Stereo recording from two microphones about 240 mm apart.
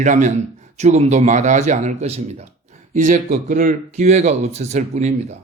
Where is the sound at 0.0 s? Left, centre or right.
Right.